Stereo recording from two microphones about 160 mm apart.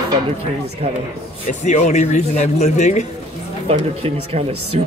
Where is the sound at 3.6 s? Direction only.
40° right (ahead or behind).